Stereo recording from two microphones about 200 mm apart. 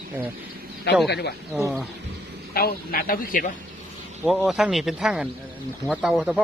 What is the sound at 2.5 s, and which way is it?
A man's voice, 50° left (ahead or behind).